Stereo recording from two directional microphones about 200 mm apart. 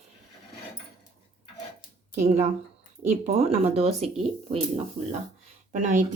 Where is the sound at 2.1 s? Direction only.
35° right (ahead or behind).